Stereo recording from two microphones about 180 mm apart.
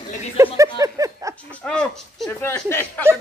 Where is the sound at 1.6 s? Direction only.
5° left (ahead or behind).